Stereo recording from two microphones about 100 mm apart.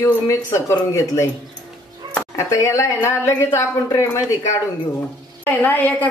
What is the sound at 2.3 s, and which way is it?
A woman's voice, 30° left (ahead or behind).